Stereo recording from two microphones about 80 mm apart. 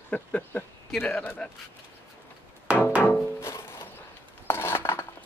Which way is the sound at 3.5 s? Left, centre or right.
Left.